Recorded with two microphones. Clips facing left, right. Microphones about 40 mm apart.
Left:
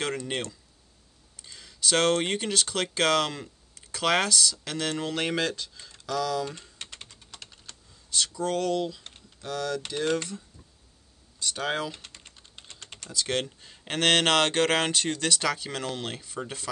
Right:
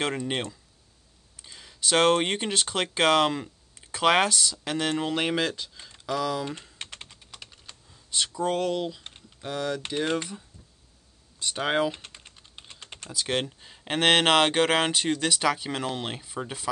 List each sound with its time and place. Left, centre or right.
0.3 s speech: centre
11.3 s typing: right
13.0 s speech: centre